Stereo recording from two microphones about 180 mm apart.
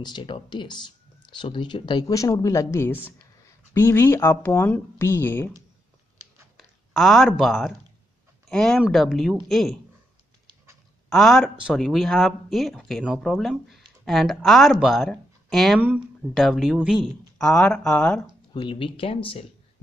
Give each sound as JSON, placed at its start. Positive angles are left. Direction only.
{"t": 0.0, "sound": "speech", "side_deg": 25}
{"t": 6.5, "sound": "speech", "side_deg": 0}
{"t": 11.1, "sound": "speech", "side_deg": 0}
{"t": 18.5, "sound": "speech", "side_deg": 30}